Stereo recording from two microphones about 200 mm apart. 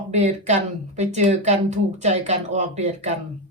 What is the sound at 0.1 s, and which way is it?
Speech, 35° right (ahead or behind).